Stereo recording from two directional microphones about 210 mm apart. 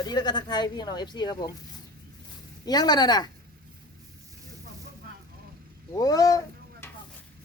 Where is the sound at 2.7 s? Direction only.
20° left (ahead or behind).